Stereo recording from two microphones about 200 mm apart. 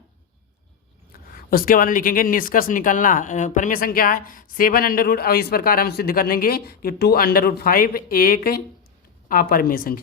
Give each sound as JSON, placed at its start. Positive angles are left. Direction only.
{"t": 1.5, "sound": "speech", "side_deg": 45}